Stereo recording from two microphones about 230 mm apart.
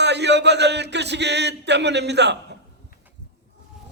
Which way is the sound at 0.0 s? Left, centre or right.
Right.